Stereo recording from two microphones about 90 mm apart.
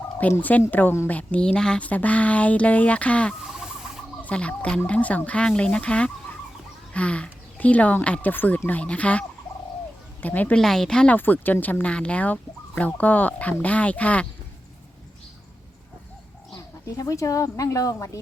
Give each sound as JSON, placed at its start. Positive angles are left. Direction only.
{"t": 0.2, "sound": "speech", "side_deg": 20}
{"t": 3.4, "sound": "fowl", "side_deg": -5}
{"t": 4.2, "sound": "a woman's voice", "side_deg": 15}
{"t": 10.6, "sound": "speech", "side_deg": 5}
{"t": 11.2, "sound": "speech", "side_deg": 20}
{"t": 16.8, "sound": "speech", "side_deg": 40}